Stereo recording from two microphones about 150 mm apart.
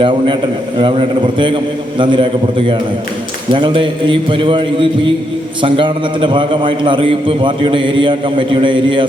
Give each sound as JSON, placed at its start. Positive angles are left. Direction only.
{"t": 0.0, "sound": "a man's voice", "side_deg": -30}